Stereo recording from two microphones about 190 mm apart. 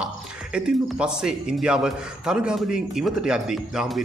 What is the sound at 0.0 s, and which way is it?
Speech, 5° right (ahead or behind).